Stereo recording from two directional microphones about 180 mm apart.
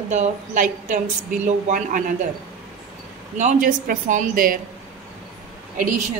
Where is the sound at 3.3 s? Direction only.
45° right (ahead or behind).